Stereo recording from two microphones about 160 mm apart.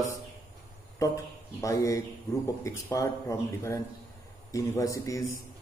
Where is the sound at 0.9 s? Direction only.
20° left (ahead or behind).